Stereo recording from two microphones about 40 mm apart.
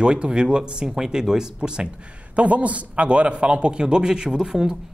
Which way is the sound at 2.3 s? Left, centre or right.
Right.